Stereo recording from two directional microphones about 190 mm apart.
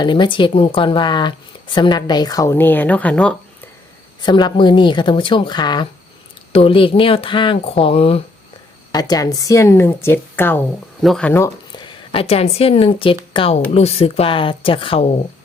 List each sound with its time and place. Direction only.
0.0 s speech: 25° left (ahead or behind); by 3.3 s 5° left (ahead or behind)
4.2 s speech: 25° left (ahead or behind)
11.7 s speech: 25° left (ahead or behind)